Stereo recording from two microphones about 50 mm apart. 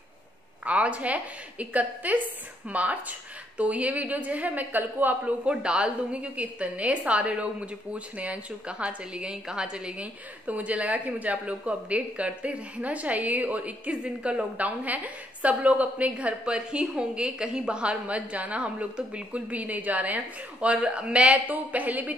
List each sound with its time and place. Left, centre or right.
0.7 s speech: right
5.4 s speech: centre
10.4 s speech: right
20.6 s speech: right